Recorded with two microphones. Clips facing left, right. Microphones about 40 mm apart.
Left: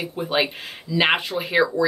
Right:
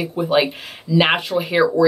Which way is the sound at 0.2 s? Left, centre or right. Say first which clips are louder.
Right 5 dB; centre.